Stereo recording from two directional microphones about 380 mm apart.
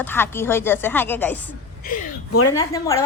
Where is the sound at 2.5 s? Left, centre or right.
Centre.